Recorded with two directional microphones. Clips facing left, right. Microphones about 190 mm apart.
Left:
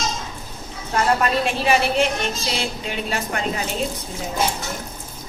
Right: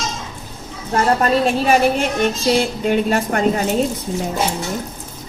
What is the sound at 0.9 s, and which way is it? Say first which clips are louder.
A woman's voice: right 4 dB; 45° right (ahead or behind).